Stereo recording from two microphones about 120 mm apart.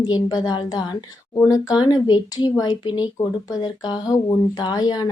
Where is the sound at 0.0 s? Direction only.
35° left (ahead or behind).